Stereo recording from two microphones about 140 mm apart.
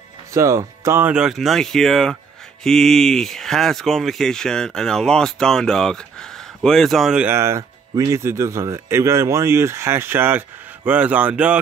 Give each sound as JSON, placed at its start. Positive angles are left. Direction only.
{"t": 0.3, "sound": "speech", "side_deg": -20}
{"t": 1.1, "sound": "speech", "side_deg": -5}
{"t": 7.2, "sound": "speech", "side_deg": -20}